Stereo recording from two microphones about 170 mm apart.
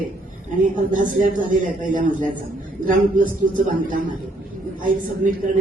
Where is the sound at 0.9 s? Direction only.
50° right (ahead or behind).